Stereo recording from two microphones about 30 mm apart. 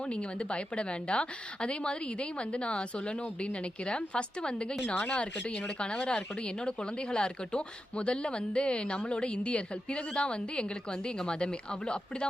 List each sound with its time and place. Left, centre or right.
0.1 s speech: left
5.8 s speech: left